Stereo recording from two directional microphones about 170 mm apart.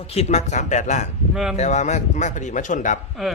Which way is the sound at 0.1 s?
40° left (ahead or behind).